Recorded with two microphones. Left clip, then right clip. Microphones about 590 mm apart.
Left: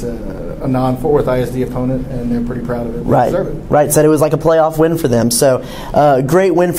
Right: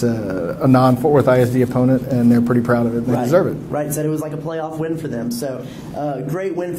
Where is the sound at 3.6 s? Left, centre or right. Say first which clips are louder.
Left 11 dB; left.